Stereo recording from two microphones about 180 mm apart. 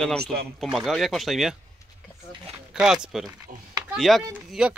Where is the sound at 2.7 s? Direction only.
5° right (ahead or behind).